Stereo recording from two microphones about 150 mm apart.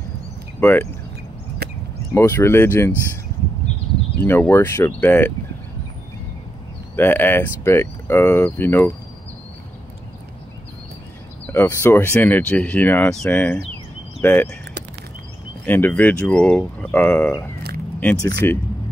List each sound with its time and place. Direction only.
0.6 s speech: 10° left (ahead or behind)
1.6 s a sound: 90° right
2.1 s speech: 15° left (ahead or behind)
4.2 s speech: 15° left (ahead or behind)
7.0 s speech: 15° left (ahead or behind)
11.4 s speech: 15° left (ahead or behind)
15.6 s speech: 10° left (ahead or behind)